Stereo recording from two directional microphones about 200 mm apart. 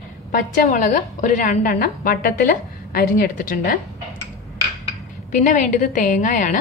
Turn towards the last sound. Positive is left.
turn(degrees=40)  # may be behind; listen again after turning